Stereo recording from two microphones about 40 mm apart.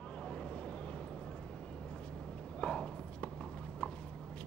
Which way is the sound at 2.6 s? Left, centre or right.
Left.